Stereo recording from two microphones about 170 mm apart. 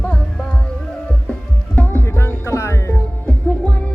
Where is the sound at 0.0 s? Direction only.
5° left (ahead or behind).